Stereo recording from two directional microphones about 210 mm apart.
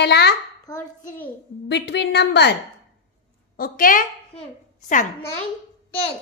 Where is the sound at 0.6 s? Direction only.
15° left (ahead or behind).